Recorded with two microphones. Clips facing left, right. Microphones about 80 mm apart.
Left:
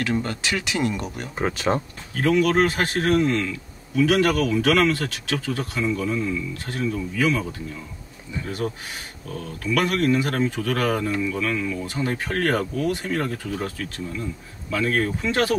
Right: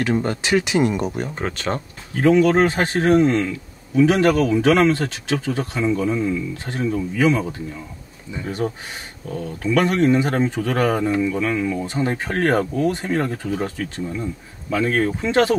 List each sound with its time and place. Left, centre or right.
0.0 s a man's voice: right
1.4 s speech: centre
2.1 s a man's voice: right
8.5 s a man's voice: right